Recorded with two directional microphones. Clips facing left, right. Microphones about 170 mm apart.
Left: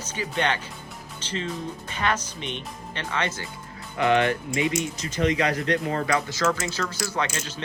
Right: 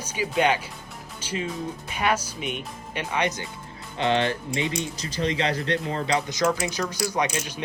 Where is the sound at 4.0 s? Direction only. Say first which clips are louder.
Left 2 dB; 30° right (ahead or behind).